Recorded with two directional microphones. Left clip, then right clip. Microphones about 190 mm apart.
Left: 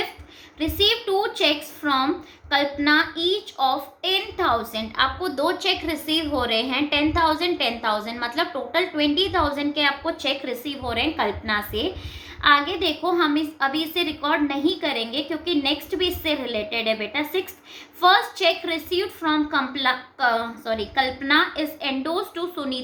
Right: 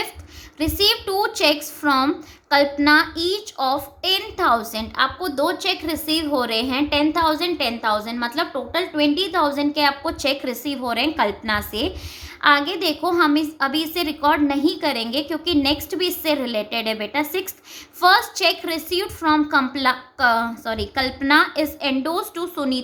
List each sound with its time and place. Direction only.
0.6 s a woman's voice: 50° right (ahead or behind)